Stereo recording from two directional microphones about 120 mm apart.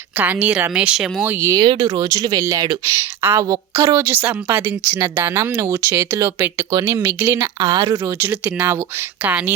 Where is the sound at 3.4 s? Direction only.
30° right (ahead or behind).